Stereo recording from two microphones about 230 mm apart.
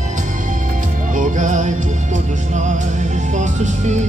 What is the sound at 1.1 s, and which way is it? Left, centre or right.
Music, right.